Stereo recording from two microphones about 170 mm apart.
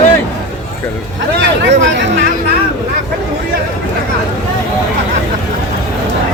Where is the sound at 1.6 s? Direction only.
90° right.